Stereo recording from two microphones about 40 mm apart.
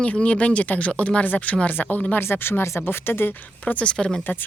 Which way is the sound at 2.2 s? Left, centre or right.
Left.